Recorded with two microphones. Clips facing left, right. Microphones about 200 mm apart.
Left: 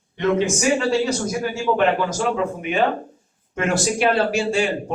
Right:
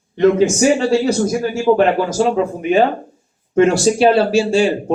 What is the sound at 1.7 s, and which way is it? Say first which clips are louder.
Speech: right 5 dB; 35° right (ahead or behind).